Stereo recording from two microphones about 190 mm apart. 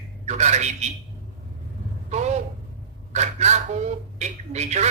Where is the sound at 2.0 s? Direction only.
35° right (ahead or behind).